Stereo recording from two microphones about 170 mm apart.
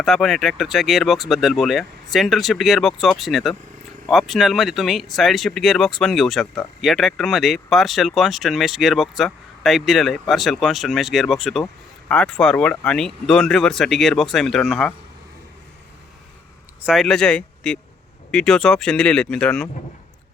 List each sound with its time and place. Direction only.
0.0 s speech: centre (ahead or behind)
16.8 s speech: centre (ahead or behind)